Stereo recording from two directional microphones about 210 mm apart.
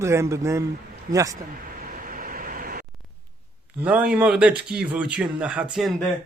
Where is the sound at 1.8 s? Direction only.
40° right (ahead or behind).